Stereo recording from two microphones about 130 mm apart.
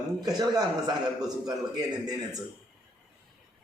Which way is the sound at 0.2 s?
30° right (ahead or behind).